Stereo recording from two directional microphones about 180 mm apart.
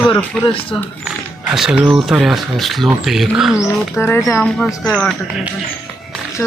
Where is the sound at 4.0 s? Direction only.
15° left (ahead or behind).